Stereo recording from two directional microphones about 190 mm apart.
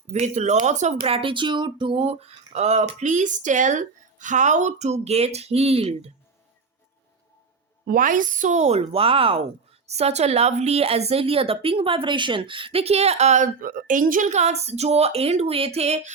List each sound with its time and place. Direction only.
0.1 s a woman's voice: 35° right (ahead or behind)
7.9 s a woman's voice: 45° right (ahead or behind)